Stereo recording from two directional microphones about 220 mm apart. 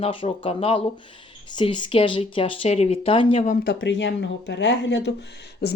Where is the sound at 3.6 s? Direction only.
55° left (ahead or behind).